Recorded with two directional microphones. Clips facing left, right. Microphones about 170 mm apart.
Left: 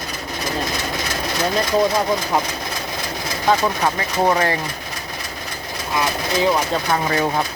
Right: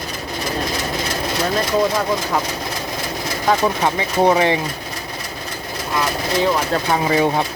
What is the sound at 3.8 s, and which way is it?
Speech, 20° right (ahead or behind).